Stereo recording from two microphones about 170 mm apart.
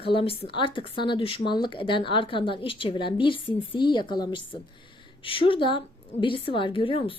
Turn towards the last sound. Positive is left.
turn(degrees=30)  # may be behind; listen again after turning